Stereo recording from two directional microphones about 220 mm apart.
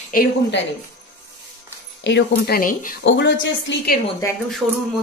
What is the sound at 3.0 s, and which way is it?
Speech, 55° left (ahead or behind).